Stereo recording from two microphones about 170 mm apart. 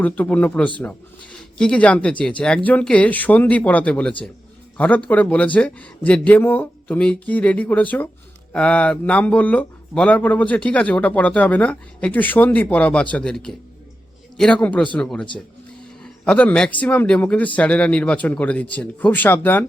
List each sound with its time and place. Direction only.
0.0 s speech: 10° left (ahead or behind)